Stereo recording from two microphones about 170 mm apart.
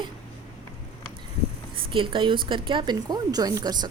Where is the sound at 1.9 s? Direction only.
30° right (ahead or behind).